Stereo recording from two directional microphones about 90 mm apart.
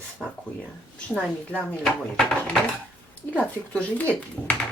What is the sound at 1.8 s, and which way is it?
Speech, centre (ahead or behind).